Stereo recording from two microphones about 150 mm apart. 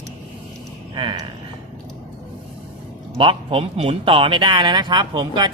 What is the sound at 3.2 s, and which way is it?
Speech, 35° right (ahead or behind).